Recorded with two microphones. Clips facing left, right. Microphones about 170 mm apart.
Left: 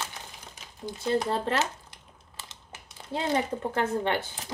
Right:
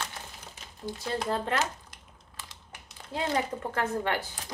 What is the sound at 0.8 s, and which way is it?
Speech, 25° left (ahead or behind).